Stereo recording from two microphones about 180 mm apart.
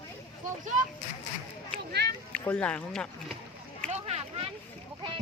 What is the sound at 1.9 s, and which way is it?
Speech, 65° right (ahead or behind).